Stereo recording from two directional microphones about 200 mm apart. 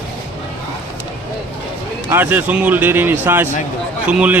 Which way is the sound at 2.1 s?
10° right (ahead or behind).